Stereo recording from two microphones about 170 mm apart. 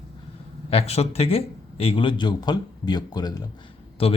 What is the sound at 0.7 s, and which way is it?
A man's voice, 35° left (ahead or behind).